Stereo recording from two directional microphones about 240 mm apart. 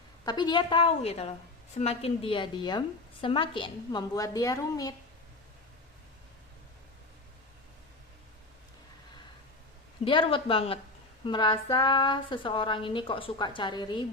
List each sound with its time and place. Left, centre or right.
0.3 s a woman's voice: centre
10.0 s a woman's voice: left